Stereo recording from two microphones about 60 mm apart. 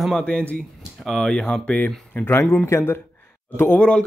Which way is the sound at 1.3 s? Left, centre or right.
Centre.